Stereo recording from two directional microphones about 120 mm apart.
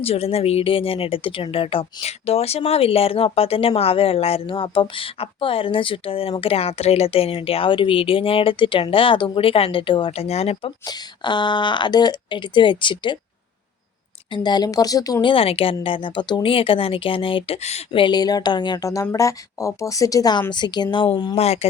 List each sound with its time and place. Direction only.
0.0 s speech: 55° left (ahead or behind)
10.8 s speech: 40° left (ahead or behind)
14.3 s speech: 35° left (ahead or behind)
15.3 s speech: 50° left (ahead or behind)
17.9 s speech: 40° left (ahead or behind)
21.3 s speech: 60° left (ahead or behind)